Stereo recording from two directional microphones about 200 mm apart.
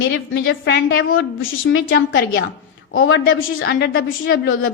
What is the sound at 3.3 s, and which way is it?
A woman's voice, 55° left (ahead or behind).